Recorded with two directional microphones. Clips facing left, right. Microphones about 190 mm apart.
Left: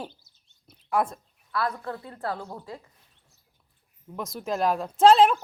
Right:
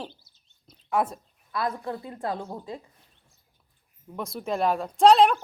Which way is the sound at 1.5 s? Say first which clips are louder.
Even; 20° right (ahead or behind).